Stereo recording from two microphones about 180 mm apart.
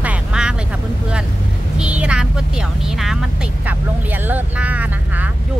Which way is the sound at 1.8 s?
5° right (ahead or behind).